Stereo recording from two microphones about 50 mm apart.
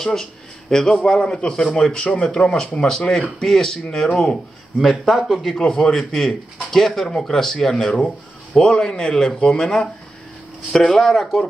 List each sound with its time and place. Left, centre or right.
0.0 s a man's voice: centre
5.6 s a man's voice: centre